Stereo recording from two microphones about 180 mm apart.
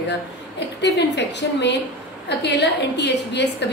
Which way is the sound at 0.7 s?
70° left (ahead or behind).